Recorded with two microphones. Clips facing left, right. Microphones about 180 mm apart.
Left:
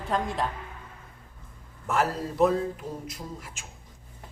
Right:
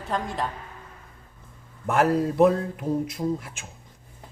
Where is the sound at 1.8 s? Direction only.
60° right (ahead or behind).